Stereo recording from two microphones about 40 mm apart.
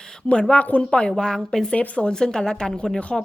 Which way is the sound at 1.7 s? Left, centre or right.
Left.